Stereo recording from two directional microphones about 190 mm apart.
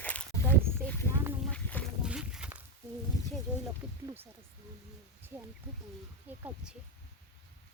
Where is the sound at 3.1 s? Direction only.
20° left (ahead or behind).